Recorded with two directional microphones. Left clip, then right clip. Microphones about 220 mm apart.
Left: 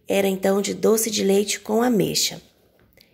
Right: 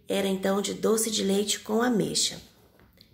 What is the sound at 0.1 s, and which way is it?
Speech, 35° left (ahead or behind).